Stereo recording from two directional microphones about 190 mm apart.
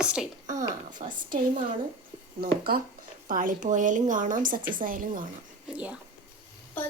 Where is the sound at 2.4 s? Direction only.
50° right (ahead or behind).